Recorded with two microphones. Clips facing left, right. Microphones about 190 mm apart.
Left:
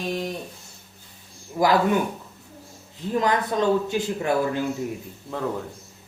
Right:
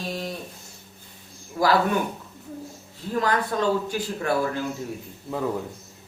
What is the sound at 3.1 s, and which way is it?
Speech, 20° left (ahead or behind).